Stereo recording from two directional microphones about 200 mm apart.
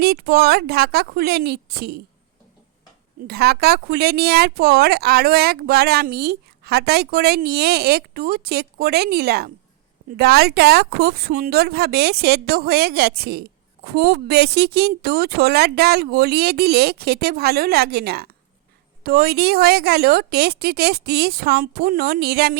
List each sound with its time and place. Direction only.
0.0 s speech: 50° right (ahead or behind)
3.2 s speech: 50° right (ahead or behind)